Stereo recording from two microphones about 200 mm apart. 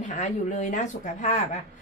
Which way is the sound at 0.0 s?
40° left (ahead or behind).